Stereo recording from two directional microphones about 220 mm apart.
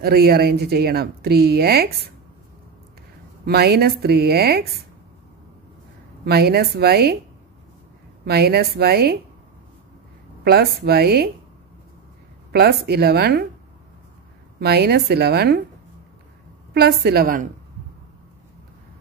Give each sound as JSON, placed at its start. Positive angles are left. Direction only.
{"t": 0.0, "sound": "speech", "side_deg": -45}
{"t": 3.4, "sound": "speech", "side_deg": -45}
{"t": 6.2, "sound": "speech", "side_deg": -45}
{"t": 8.3, "sound": "speech", "side_deg": -45}
{"t": 10.4, "sound": "speech", "side_deg": -45}
{"t": 12.5, "sound": "speech", "side_deg": -45}
{"t": 14.6, "sound": "speech", "side_deg": -45}
{"t": 16.7, "sound": "speech", "side_deg": -45}